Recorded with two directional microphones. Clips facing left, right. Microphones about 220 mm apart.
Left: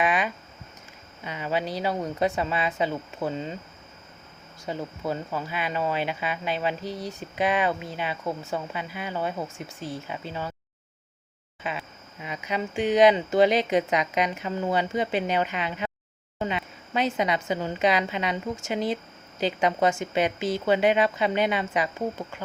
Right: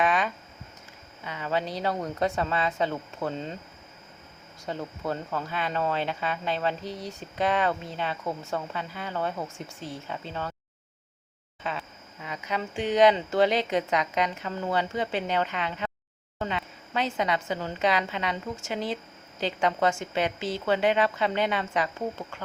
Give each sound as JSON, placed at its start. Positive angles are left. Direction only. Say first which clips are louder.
{"t": 0.0, "sound": "a sound", "louder": "even", "side_deg": 10}
{"t": 1.2, "sound": "speech", "louder": "left 1 dB", "side_deg": 15}
{"t": 4.6, "sound": "speech", "louder": "left 1 dB", "side_deg": 5}
{"t": 11.6, "sound": "speech", "louder": "left 1 dB", "side_deg": 10}